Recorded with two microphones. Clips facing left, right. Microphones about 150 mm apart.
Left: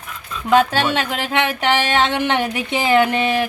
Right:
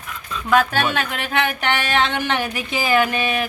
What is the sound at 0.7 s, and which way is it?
Speech, 25° left (ahead or behind).